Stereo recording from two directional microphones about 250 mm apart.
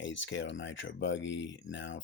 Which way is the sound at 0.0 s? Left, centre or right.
Left.